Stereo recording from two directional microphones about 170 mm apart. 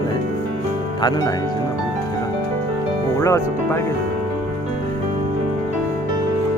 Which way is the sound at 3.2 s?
15° left (ahead or behind).